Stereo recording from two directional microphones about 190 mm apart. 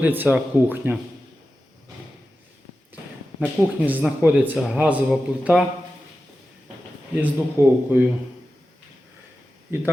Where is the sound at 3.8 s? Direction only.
10° right (ahead or behind).